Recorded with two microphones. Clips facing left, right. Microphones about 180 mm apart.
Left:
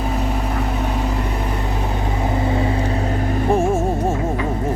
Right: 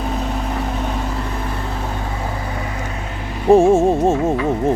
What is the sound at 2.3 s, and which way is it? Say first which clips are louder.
Vehicle: left 7 dB; 25° left (ahead or behind).